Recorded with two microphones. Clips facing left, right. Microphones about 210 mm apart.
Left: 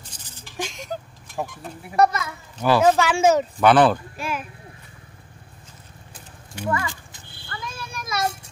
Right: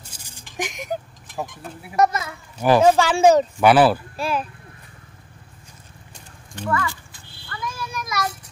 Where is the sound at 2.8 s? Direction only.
30° right (ahead or behind).